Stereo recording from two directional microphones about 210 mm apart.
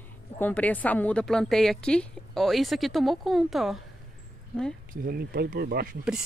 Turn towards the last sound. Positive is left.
turn(degrees=-50)  # may be behind; listen again after turning